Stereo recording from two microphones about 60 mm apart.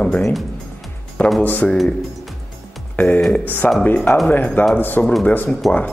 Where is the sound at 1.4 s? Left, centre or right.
Left.